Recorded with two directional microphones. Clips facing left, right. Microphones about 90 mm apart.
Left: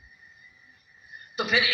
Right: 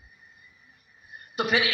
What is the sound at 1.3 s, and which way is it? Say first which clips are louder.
Speech: right 1 dB; 50° right (ahead or behind).